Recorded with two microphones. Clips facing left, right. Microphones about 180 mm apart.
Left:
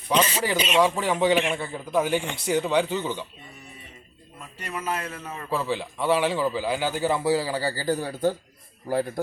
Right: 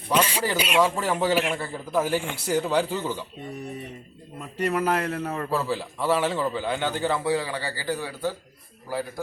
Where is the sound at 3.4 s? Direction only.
60° right (ahead or behind).